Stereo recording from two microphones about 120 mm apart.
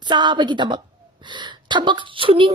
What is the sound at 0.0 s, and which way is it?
Speech, 40° right (ahead or behind).